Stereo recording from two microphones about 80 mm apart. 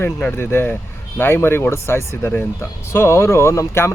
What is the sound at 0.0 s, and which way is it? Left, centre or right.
Speech, centre.